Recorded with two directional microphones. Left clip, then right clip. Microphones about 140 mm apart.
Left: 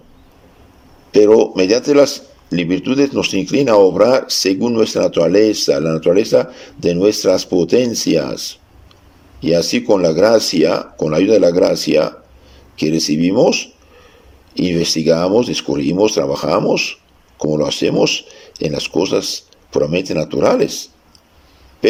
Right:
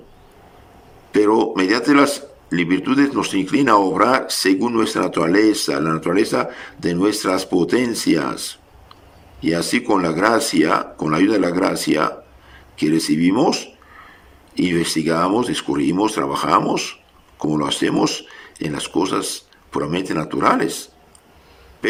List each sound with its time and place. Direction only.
1.5 s a man's voice: 20° left (ahead or behind)